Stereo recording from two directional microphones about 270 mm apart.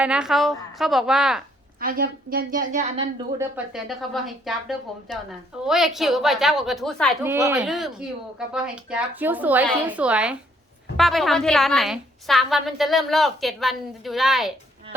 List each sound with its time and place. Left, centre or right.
0.0 s a woman's voice: centre
1.8 s a woman's voice: right
3.3 s a woman's voice: centre